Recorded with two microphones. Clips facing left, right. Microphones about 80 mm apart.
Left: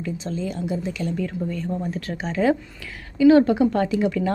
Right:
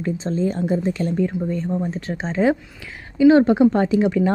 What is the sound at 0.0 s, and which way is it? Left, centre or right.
Speech, right.